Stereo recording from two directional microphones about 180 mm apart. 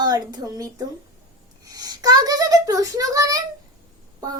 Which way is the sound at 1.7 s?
20° right (ahead or behind).